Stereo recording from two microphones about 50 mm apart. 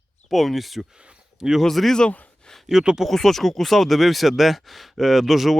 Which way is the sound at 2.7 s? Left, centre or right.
Centre.